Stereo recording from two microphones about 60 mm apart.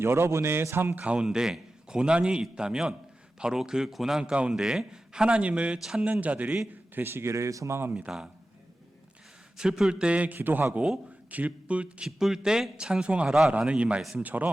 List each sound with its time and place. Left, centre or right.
0.0 s a man's voice: right
0.9 s a man's voice: centre
5.8 s a man's voice: centre
6.1 s a man's voice: right
6.9 s a man's voice: right
8.1 s a man's voice: centre
9.6 s a man's voice: centre
12.0 s a man's voice: centre; by 14.5 s right